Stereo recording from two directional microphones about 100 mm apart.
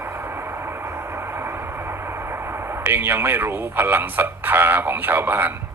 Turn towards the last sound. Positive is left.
turn(degrees=-20)  # may be behind; listen again after turning